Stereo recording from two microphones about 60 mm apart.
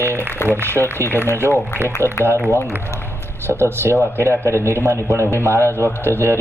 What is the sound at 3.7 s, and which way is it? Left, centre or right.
A man's voice, right.